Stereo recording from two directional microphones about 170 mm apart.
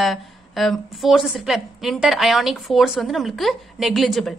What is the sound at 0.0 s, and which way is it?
A woman's voice, centre (ahead or behind).